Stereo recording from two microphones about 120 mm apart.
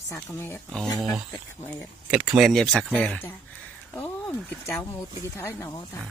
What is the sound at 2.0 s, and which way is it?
Speech, 10° right (ahead or behind).